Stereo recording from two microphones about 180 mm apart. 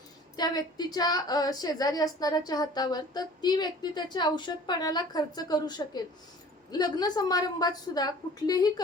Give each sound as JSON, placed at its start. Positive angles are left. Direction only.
{"t": 0.3, "sound": "a woman's voice", "side_deg": 20}